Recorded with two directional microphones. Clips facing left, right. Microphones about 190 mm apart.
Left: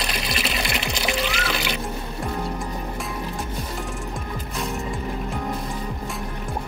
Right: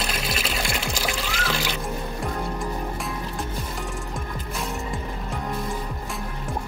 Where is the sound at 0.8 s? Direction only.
65° left (ahead or behind).